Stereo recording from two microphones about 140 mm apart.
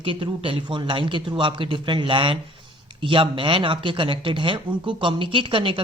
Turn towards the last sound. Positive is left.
turn(degrees=-35)  # may be behind; listen again after turning